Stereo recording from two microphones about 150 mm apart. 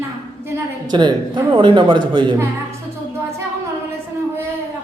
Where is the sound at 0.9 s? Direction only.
30° right (ahead or behind).